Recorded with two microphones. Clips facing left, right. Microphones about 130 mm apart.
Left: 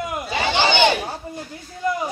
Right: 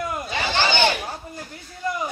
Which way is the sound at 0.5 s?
15° left (ahead or behind).